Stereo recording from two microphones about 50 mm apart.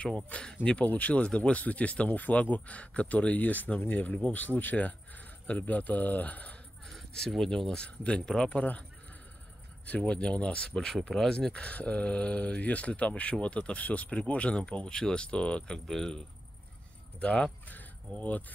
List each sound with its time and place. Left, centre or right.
0.0 s speech: left
0.8 s speech: left
6.9 s speech: centre
9.8 s speech: left
15.9 s speech: centre
17.2 s speech: left